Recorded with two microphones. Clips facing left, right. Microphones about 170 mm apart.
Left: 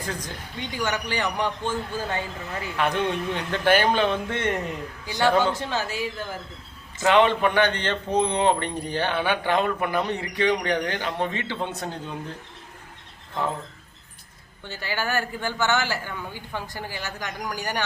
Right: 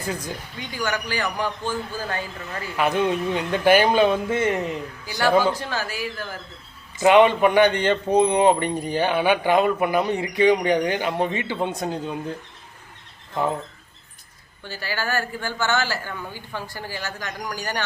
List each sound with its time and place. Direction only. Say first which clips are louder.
0.0 s speech: right 3 dB; 10° right (ahead or behind)
0.6 s speech: even; 25° left (ahead or behind)
2.7 s speech: right 4 dB; 10° right (ahead or behind)
5.0 s speech: even; 20° left (ahead or behind)
5.3 s speech: right 4 dB; 10° right (ahead or behind)
5.5 s speech: left 1 dB; 25° left (ahead or behind)
7.0 s speech: right 4 dB; 15° right (ahead or behind)
14.6 s speech: even; 20° left (ahead or behind)